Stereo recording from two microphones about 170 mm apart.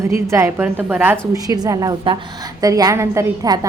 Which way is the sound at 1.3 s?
20° right (ahead or behind).